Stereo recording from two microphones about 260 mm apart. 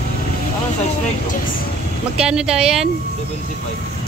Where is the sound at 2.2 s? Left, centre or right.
Centre.